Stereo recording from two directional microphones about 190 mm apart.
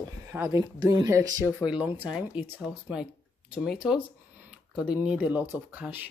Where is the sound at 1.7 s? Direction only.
5° right (ahead or behind).